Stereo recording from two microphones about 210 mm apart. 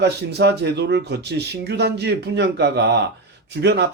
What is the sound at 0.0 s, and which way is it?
Speech, 55° right (ahead or behind).